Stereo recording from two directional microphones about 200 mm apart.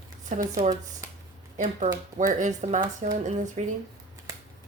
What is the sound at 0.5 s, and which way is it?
Speech, 40° right (ahead or behind).